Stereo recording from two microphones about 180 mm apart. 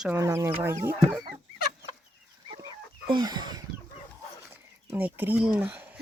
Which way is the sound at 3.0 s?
25° right (ahead or behind).